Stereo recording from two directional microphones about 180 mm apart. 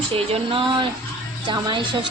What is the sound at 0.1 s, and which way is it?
A woman's voice, 30° right (ahead or behind).